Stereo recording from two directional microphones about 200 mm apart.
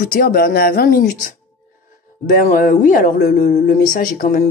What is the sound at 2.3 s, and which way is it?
Speech, 45° left (ahead or behind).